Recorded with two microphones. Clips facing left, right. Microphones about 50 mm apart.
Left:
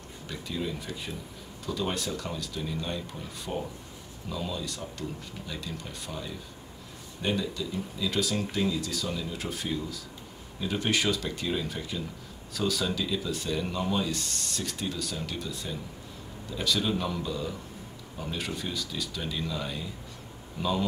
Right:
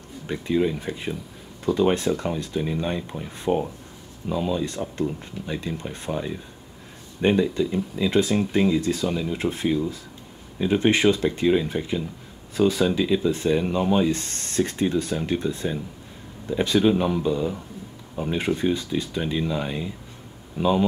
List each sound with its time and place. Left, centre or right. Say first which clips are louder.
0.3 s speech: right 11 dB; right